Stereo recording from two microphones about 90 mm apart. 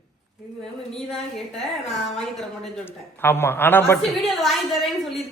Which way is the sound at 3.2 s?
25° left (ahead or behind).